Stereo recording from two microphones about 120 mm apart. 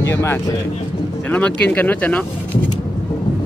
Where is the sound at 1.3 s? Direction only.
10° left (ahead or behind).